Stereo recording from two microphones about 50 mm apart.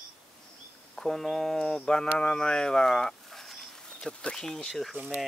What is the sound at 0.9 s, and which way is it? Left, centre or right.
Speech, centre.